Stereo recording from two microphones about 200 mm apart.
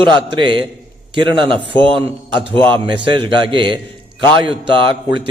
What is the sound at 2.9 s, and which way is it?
A man's voice, 25° right (ahead or behind).